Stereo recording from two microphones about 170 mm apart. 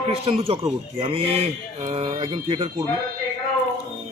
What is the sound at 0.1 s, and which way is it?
Speech, 35° right (ahead or behind).